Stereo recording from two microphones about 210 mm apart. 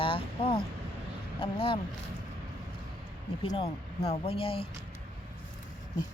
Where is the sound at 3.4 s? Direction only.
25° left (ahead or behind).